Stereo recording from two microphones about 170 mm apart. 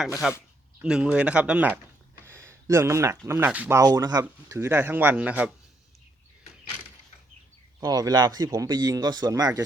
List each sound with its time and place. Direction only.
0.2 s speech: centre (ahead or behind)
7.8 s speech: 20° right (ahead or behind)